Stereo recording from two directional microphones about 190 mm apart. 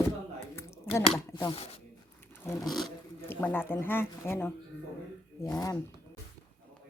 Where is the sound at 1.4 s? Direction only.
25° left (ahead or behind).